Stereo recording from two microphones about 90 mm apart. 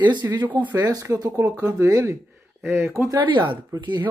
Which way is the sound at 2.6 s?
30° right (ahead or behind).